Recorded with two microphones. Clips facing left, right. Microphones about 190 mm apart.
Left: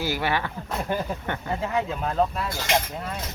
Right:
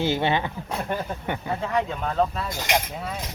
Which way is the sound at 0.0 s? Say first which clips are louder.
Right 3 dB; 25° right (ahead or behind).